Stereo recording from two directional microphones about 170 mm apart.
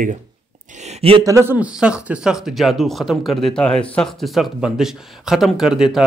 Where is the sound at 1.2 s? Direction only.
15° right (ahead or behind).